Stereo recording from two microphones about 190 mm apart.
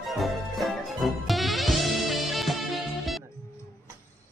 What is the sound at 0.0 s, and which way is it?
Music, centre (ahead or behind).